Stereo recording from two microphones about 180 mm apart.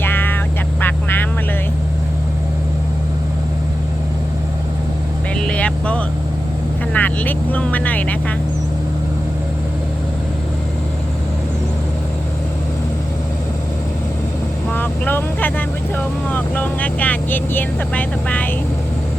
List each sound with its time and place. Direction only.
0.0 s vehicle: 10° left (ahead or behind)
5.4 s vehicle: 5° left (ahead or behind)
14.7 s vehicle: 10° left (ahead or behind)